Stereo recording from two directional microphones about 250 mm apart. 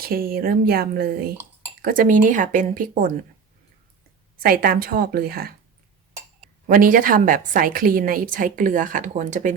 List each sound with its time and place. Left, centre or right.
0.0 s a woman's voice: right
4.4 s a woman's voice: right
6.7 s a woman's voice: right